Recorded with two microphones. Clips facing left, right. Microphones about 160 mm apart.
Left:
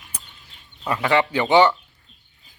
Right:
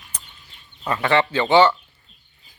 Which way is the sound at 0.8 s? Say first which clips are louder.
Even; 15° left (ahead or behind).